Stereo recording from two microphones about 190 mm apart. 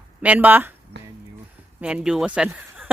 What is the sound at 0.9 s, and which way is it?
Speech, 65° right (ahead or behind).